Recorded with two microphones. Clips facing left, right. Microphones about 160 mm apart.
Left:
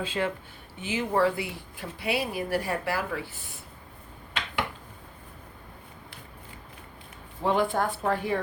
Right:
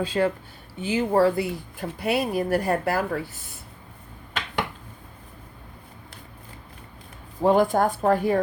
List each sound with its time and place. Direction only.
0.0 s speech: 40° right (ahead or behind)
7.4 s speech: 45° right (ahead or behind)